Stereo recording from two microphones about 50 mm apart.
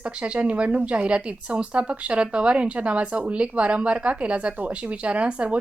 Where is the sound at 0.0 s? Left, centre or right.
Right.